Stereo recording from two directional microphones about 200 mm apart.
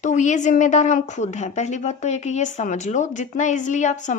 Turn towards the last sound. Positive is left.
turn(degrees=35)  # may be behind; listen again after turning